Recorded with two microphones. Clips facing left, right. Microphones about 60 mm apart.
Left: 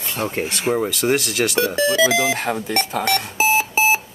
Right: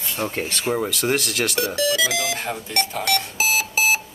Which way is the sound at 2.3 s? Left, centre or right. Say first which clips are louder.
Left 5 dB; left.